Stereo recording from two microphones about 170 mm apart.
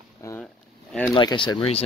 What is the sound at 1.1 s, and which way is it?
Speech, 30° left (ahead or behind).